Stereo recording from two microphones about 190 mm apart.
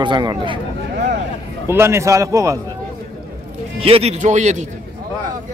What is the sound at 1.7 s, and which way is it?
Speech, 15° right (ahead or behind).